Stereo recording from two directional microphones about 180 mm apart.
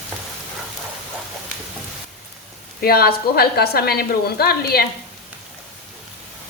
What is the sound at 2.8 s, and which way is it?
A woman's voice, 60° left (ahead or behind).